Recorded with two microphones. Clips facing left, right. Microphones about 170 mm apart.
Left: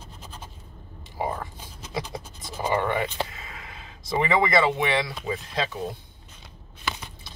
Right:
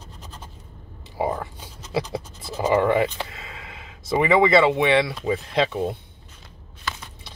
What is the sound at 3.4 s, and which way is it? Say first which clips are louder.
Speech: right 2 dB; 25° right (ahead or behind).